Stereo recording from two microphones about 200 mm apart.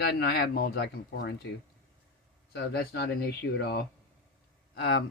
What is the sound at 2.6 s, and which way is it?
Speech, 55° left (ahead or behind).